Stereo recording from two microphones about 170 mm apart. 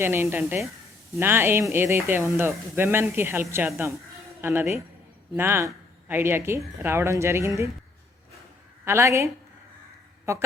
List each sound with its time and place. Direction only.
0.0 s speech: 15° right (ahead or behind)
8.8 s speech: 15° right (ahead or behind)